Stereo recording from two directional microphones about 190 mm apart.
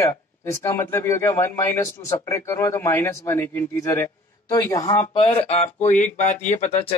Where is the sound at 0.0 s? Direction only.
15° left (ahead or behind).